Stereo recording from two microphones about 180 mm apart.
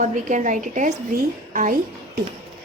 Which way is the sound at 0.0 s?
45° right (ahead or behind).